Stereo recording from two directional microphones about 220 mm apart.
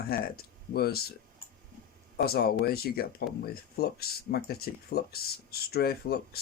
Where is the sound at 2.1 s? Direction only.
45° left (ahead or behind).